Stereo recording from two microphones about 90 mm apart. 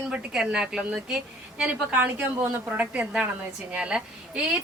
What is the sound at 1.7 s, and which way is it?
A woman's voice, 15° right (ahead or behind).